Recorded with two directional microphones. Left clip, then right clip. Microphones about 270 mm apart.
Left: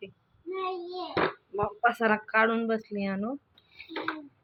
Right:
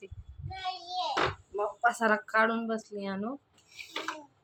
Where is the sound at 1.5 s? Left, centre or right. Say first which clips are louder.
Left 2 dB; centre.